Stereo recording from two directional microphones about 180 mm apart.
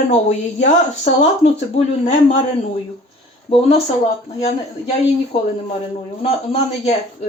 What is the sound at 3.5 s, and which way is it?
Speech, 35° left (ahead or behind).